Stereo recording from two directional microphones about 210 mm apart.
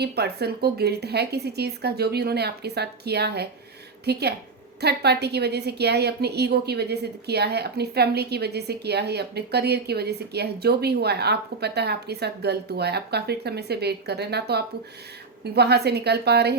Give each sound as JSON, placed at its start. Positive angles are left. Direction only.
{"t": 0.0, "sound": "a woman's voice", "side_deg": -50}